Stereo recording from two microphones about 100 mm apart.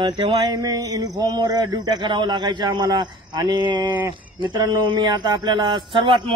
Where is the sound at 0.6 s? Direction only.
40° right (ahead or behind).